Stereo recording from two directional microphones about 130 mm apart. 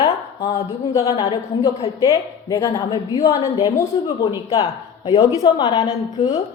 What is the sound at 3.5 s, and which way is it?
A woman's voice, 25° left (ahead or behind).